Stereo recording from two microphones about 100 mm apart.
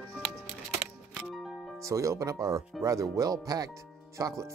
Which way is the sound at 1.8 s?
30° right (ahead or behind).